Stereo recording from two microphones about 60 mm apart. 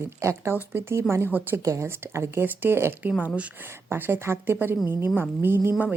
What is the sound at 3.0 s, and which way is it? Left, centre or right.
Speech, right.